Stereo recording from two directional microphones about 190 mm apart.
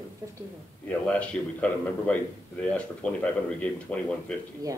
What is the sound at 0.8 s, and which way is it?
A man's voice, 5° left (ahead or behind).